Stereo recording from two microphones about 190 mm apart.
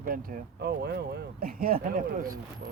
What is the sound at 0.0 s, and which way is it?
Speech, 45° right (ahead or behind).